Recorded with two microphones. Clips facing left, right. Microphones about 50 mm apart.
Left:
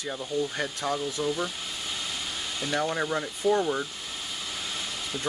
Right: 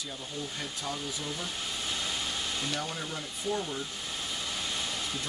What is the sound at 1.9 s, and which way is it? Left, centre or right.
Vehicle, centre.